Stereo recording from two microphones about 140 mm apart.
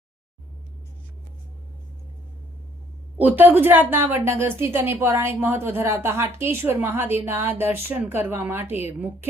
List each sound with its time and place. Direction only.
3.2 s a woman's voice: 15° right (ahead or behind)